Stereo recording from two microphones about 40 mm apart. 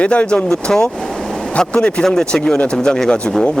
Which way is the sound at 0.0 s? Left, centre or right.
Left.